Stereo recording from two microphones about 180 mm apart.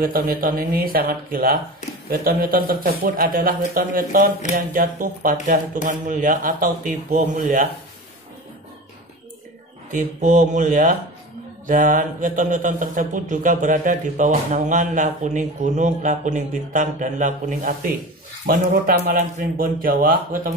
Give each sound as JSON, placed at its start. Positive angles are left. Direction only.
{"t": 0.0, "sound": "speech", "side_deg": -55}
{"t": 9.9, "sound": "speech", "side_deg": -45}